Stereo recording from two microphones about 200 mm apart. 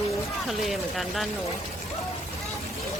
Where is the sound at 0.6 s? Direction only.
Centre (ahead or behind).